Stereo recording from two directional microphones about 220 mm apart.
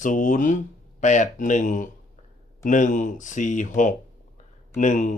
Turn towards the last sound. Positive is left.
turn(degrees=35)  # may be behind; listen again after turning